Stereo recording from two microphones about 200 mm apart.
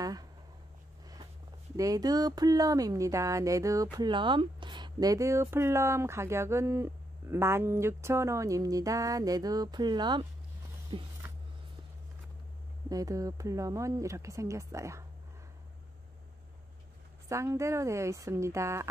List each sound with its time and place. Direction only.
0.0 s speech: 20° right (ahead or behind)
1.8 s speech: 20° right (ahead or behind)
12.9 s speech: 15° right (ahead or behind)
17.3 s speech: 15° right (ahead or behind)